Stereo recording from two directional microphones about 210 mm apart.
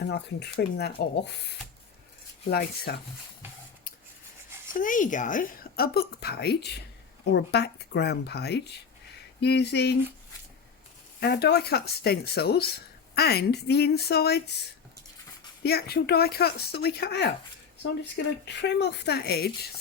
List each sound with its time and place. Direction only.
0.1 s speech: 50° left (ahead or behind)
4.7 s speech: 40° left (ahead or behind)
11.2 s speech: 50° left (ahead or behind)
15.6 s speech: 50° left (ahead or behind)
18.4 s speech: 55° left (ahead or behind)